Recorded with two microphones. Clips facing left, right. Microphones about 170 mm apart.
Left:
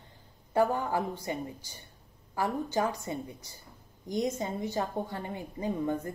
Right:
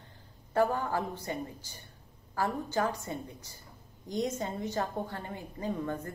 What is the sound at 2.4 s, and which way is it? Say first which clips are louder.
A woman's voice: left 1 dB; 15° left (ahead or behind).